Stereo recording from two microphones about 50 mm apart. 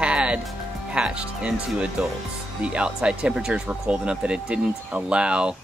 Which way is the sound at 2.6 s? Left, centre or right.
Centre.